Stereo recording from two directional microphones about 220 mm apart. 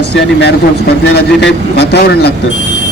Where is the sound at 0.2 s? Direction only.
50° left (ahead or behind).